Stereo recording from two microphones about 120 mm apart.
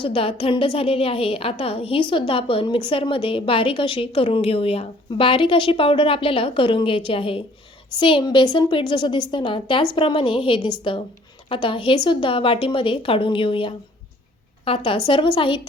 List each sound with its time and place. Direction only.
0.0 s a woman's voice: 50° left (ahead or behind)